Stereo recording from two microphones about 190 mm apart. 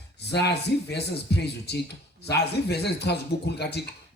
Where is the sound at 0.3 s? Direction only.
60° left (ahead or behind).